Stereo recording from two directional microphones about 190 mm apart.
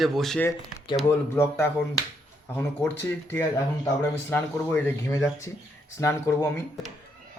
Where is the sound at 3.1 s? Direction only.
10° left (ahead or behind).